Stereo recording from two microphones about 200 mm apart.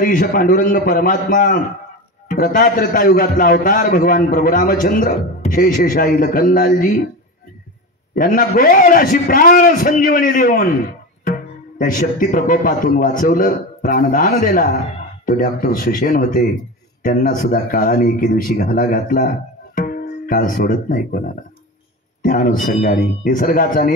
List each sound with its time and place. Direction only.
0.0 s a man's voice: 45° left (ahead or behind)
8.1 s a man's voice: 45° left (ahead or behind)
11.8 s a man's voice: 45° left (ahead or behind)
22.2 s a man's voice: 45° left (ahead or behind)